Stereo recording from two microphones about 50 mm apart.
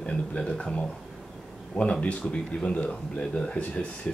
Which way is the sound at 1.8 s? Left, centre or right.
Left.